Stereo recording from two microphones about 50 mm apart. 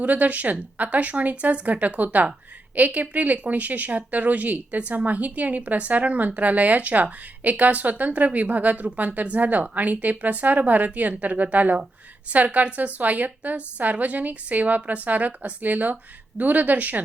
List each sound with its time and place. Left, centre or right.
0.0 s speech: right